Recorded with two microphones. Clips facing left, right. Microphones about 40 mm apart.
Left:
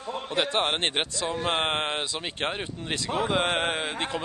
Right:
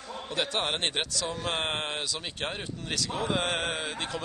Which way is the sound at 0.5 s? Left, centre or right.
Left.